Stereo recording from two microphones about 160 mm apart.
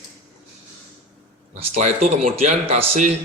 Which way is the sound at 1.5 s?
40° right (ahead or behind).